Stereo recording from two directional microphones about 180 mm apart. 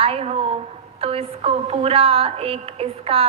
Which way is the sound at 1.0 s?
30° right (ahead or behind).